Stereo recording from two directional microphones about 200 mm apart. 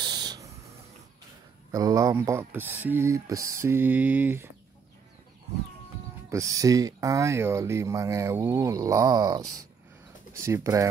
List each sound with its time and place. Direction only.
0.0 s a sound: 20° right (ahead or behind)
1.7 s speech: 15° right (ahead or behind)
6.3 s speech: 15° right (ahead or behind)